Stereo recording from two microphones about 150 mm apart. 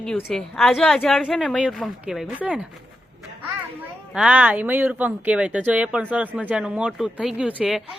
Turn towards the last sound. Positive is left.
turn(degrees=-5)  # may be behind; listen again after turning